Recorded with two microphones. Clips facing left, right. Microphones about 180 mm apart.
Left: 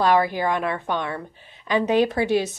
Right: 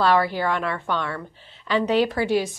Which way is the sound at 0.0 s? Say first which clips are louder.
Left 1 dB; 20° left (ahead or behind).